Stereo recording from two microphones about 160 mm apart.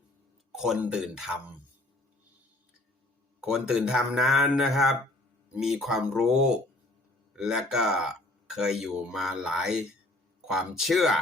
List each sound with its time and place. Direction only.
0.5 s speech: centre (ahead or behind)
3.4 s speech: 5° right (ahead or behind)